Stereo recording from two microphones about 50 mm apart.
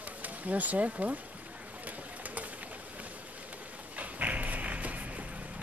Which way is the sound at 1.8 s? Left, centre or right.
Right.